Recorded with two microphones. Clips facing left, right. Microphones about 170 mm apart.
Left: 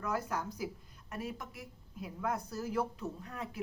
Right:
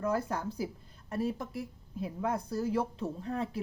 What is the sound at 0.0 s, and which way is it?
A woman's voice, 30° right (ahead or behind).